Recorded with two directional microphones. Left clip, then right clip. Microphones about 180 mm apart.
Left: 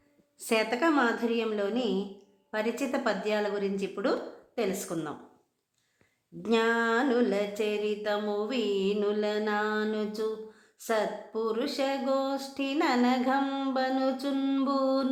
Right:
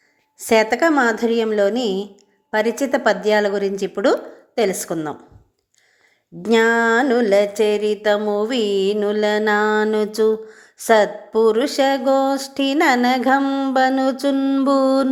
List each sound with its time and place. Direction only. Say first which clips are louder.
0.3 s music: right 12 dB; 30° right (ahead or behind)
6.5 s music: right 11 dB; 30° right (ahead or behind)
13.7 s music: right 12 dB; 35° right (ahead or behind)
14.3 s mantra: right 10 dB; 25° right (ahead or behind)
14.7 s music: right 12 dB; 35° right (ahead or behind)